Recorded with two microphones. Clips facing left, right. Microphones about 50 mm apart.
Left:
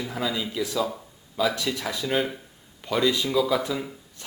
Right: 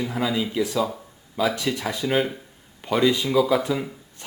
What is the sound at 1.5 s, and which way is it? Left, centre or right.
Speech, centre.